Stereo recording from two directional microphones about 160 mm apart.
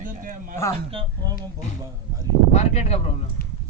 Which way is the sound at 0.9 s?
35° right (ahead or behind).